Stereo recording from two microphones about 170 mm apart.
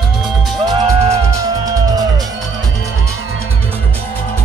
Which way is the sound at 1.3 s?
20° right (ahead or behind).